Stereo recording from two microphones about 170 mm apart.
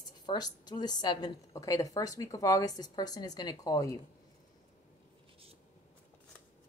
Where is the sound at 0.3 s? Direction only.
25° left (ahead or behind).